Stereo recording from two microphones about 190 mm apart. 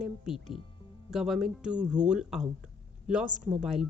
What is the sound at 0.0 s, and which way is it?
Speech, centre (ahead or behind).